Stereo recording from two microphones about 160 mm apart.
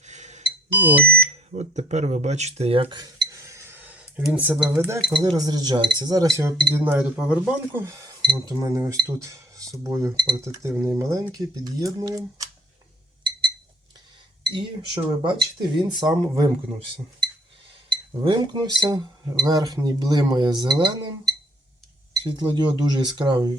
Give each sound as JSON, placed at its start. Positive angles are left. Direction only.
{"t": 0.0, "sound": "beep", "side_deg": -45}
{"t": 0.7, "sound": "speech", "side_deg": -10}
{"t": 1.1, "sound": "smoke detector", "side_deg": -45}
{"t": 4.2, "sound": "speech", "side_deg": -10}
{"t": 4.9, "sound": "speech", "side_deg": -30}
{"t": 6.7, "sound": "speech", "side_deg": -10}
{"t": 8.2, "sound": "speech", "side_deg": -25}
{"t": 14.4, "sound": "speech", "side_deg": -30}
{"t": 17.2, "sound": "a sound", "side_deg": -30}
{"t": 17.9, "sound": "speech", "side_deg": -30}
{"t": 22.2, "sound": "speech", "side_deg": -30}